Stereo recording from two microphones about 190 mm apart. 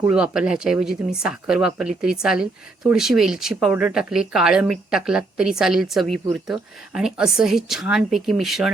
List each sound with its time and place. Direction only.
0.0 s speech: 5° right (ahead or behind)